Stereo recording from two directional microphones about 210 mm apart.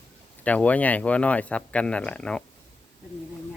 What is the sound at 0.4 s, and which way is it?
Speech, 5° left (ahead or behind).